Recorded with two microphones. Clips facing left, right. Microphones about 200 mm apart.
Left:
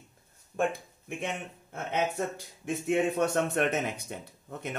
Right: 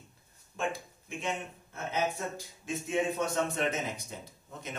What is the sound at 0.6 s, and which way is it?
A man's voice, 55° left (ahead or behind).